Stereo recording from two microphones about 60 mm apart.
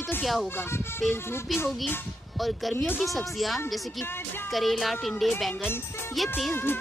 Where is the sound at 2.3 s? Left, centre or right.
Centre.